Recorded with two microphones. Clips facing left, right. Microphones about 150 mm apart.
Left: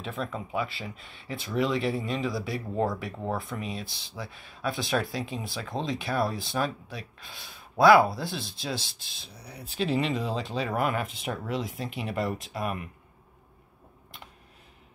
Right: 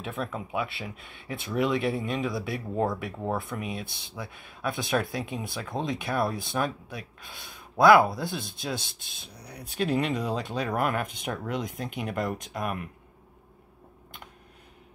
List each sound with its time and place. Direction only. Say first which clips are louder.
0.0 s speech: right 1 dB; centre (ahead or behind)
3.7 s speech: right 1 dB; 55° right (ahead or behind)
4.1 s speech: even; centre (ahead or behind)
9.0 s speech: right 1 dB; 55° right (ahead or behind)
9.3 s speech: right 1 dB; centre (ahead or behind)